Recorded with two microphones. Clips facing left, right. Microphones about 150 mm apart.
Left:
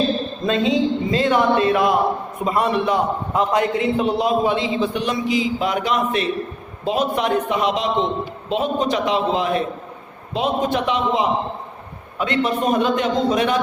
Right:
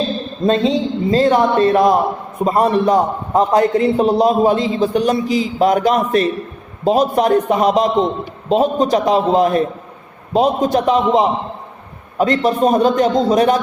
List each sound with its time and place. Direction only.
0.4 s a man's voice: 35° right (ahead or behind)